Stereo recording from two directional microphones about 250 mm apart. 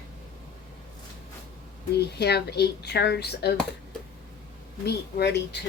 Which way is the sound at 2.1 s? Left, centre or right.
Left.